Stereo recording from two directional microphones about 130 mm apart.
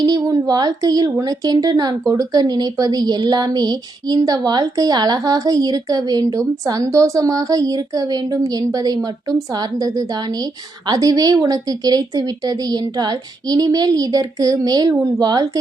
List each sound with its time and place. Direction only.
0.0 s a woman's voice: 30° right (ahead or behind)